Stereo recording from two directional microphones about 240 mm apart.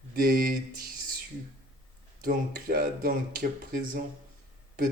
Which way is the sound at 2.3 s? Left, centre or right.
Right.